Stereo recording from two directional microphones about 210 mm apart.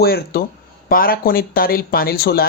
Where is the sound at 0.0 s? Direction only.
50° left (ahead or behind).